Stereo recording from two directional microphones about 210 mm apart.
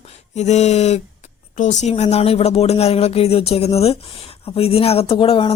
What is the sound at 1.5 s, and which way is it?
Speech, 35° left (ahead or behind).